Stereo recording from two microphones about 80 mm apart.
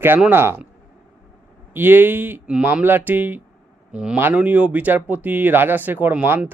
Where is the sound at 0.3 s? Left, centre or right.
Right.